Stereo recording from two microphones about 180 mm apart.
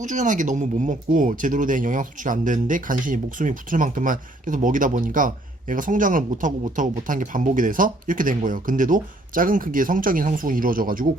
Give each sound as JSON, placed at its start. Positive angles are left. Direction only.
{"t": 0.0, "sound": "speech", "side_deg": -45}